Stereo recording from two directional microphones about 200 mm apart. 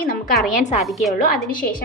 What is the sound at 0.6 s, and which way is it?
Speech, 35° left (ahead or behind).